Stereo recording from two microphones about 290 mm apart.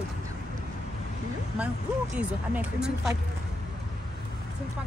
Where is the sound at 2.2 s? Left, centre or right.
Centre.